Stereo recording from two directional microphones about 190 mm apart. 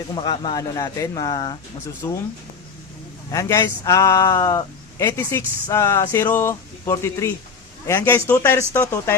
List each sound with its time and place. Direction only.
0.1 s a man's voice: 25° left (ahead or behind)
3.3 s a man's voice: 15° left (ahead or behind)